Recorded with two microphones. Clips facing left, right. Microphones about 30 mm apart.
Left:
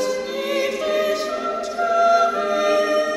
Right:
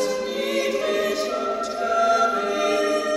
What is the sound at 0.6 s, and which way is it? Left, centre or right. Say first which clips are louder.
Choir: left 2 dB; centre.